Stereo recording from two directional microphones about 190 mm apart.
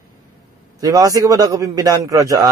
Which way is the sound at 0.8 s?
20° right (ahead or behind).